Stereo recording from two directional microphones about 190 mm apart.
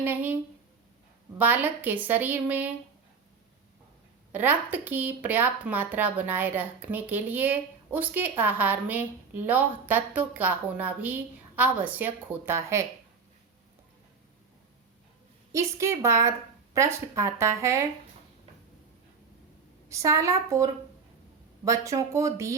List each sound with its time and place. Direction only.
0.0 s speech: 10° right (ahead or behind)
1.4 s speech: 10° right (ahead or behind)
4.3 s speech: 10° right (ahead or behind)
15.5 s speech: 15° right (ahead or behind)
19.9 s speech: 15° right (ahead or behind)